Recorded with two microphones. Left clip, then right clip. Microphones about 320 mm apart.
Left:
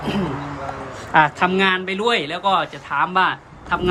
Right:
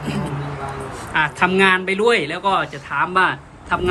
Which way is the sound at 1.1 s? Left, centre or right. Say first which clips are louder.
Left 2 dB; centre.